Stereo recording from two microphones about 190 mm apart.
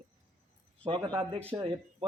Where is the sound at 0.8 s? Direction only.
25° right (ahead or behind).